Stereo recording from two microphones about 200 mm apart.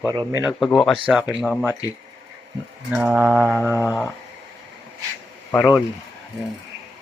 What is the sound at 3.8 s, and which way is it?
Speech, 10° left (ahead or behind).